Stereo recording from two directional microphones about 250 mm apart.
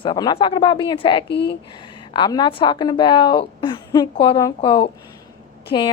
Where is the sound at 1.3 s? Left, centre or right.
Left.